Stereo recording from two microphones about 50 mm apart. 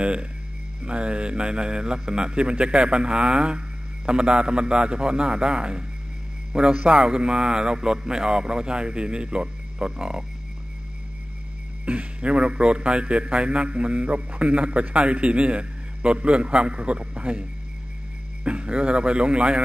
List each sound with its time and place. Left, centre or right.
0.0 s a man's voice: right
11.8 s a man's voice: right